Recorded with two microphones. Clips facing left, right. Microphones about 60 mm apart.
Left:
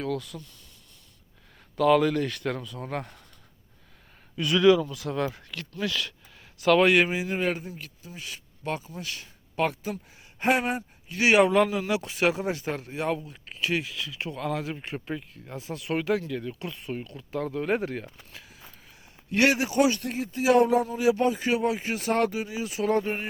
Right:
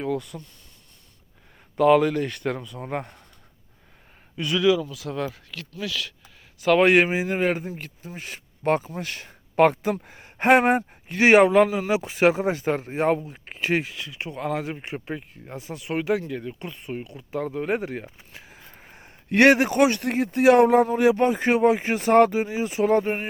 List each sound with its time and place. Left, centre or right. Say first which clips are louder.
0.0 s speech: right 3 dB; centre
2.0 s speech: right 2 dB; centre; by 3.2 s right
4.5 s speech: left 1 dB; centre
6.7 s speech: right 4 dB; right
11.4 s speech: right 4 dB; right
18.5 s speech: right 4 dB; right